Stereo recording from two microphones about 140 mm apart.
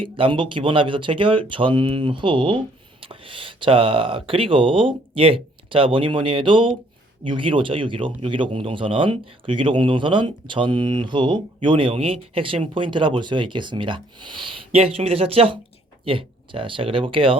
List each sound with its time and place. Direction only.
0.0 s speech: 35° right (ahead or behind)